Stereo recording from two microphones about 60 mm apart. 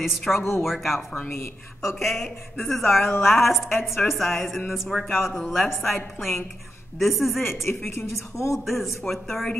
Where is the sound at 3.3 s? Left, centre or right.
Centre.